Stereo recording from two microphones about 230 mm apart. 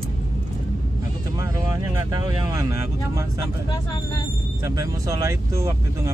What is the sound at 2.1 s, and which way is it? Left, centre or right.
Speech, centre.